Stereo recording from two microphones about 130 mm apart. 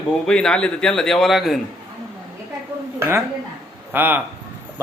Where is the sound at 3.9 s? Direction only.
15° right (ahead or behind).